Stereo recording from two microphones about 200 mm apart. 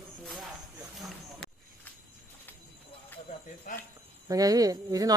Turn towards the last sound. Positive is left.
turn(degrees=-15)  # may be behind; listen again after turning